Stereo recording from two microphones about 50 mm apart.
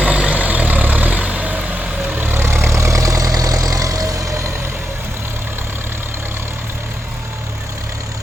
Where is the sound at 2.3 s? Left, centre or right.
Right.